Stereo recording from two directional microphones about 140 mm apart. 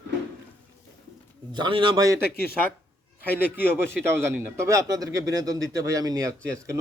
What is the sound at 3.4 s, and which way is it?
Speech, 15° right (ahead or behind).